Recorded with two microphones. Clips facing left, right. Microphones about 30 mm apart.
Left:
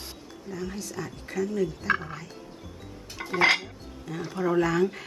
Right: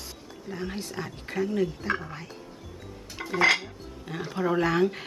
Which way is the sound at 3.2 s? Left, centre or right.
Centre.